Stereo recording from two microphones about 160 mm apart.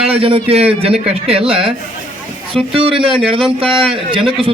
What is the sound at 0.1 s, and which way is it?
A man's voice, 35° right (ahead or behind).